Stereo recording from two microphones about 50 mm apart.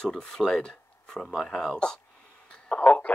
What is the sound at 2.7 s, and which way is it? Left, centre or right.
Speech, left.